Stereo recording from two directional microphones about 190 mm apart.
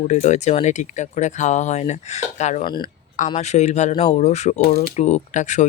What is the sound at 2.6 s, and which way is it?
Speech, 25° left (ahead or behind).